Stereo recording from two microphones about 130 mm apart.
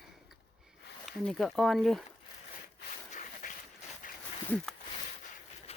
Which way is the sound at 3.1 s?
90° left.